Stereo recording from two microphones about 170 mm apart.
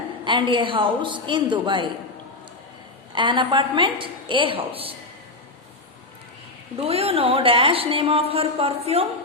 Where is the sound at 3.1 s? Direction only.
30° right (ahead or behind).